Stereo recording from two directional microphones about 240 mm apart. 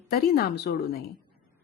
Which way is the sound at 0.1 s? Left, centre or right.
Left.